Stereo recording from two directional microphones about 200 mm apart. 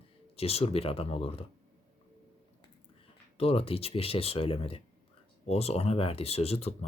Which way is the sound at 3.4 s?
30° left (ahead or behind).